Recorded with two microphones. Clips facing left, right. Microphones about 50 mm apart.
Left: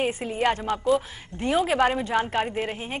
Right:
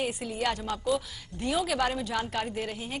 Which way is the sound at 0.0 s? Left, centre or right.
Left.